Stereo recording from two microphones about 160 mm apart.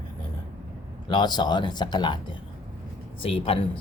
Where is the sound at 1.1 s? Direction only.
25° left (ahead or behind).